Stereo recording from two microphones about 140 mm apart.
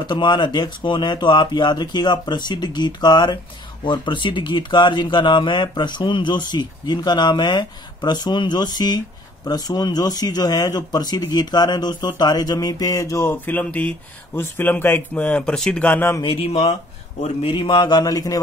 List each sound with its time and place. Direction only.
0.0 s speech: 35° left (ahead or behind); by 16.2 s 15° left (ahead or behind)
16.2 s speech: 40° left (ahead or behind); by 18.4 s 25° left (ahead or behind)